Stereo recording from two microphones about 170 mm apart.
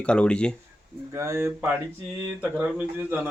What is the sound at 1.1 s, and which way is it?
Speech, 15° right (ahead or behind).